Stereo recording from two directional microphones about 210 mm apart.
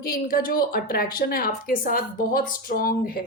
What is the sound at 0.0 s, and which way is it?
Speech, 45° left (ahead or behind).